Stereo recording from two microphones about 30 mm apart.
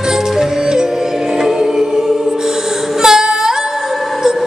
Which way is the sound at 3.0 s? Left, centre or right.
Centre.